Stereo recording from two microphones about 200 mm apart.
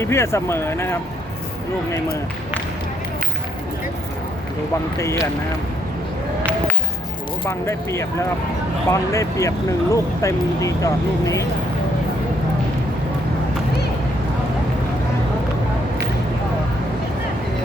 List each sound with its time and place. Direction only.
0.0 s speech: 15° left (ahead or behind)
7.4 s speech: 15° left (ahead or behind)